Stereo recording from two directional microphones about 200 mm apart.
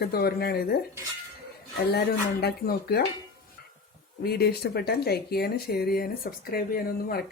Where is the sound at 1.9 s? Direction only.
55° left (ahead or behind).